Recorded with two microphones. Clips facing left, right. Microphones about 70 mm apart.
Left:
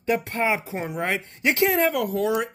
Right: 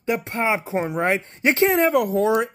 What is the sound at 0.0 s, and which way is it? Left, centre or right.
Speech, right.